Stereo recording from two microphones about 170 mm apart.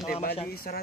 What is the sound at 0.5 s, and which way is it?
Speech, 60° left (ahead or behind).